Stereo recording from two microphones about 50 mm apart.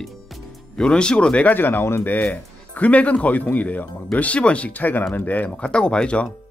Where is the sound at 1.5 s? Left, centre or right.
Left.